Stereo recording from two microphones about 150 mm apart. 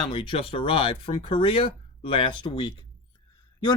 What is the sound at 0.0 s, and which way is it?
Speech, 30° left (ahead or behind).